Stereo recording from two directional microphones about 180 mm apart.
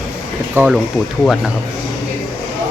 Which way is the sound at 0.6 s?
15° right (ahead or behind).